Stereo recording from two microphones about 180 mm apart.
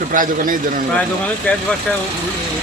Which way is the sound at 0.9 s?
5° left (ahead or behind).